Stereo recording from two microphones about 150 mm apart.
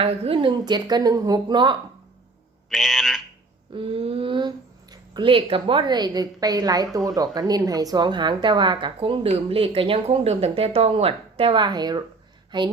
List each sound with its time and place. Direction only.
0.0 s a woman's voice: 40° right (ahead or behind)
2.6 s speech: centre (ahead or behind)
3.8 s a woman's voice: 35° right (ahead or behind)